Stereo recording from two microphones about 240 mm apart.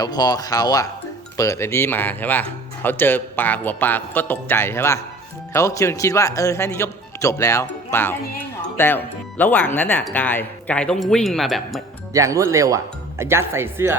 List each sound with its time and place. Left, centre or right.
0.0 s speech: centre
12.1 s speech: centre